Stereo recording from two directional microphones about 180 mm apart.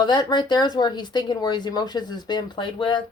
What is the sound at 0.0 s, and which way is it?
Speech, 25° left (ahead or behind).